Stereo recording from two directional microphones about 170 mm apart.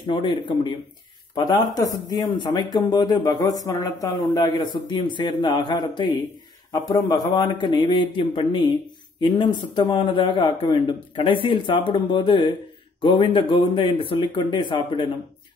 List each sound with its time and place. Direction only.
0.1 s speech: 30° left (ahead or behind)